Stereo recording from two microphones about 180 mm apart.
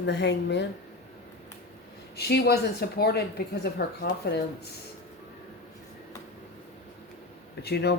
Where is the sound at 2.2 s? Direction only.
60° left (ahead or behind).